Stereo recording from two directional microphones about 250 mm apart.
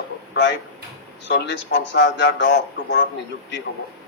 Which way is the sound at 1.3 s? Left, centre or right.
Left.